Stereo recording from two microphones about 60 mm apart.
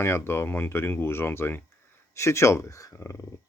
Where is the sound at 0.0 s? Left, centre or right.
Left.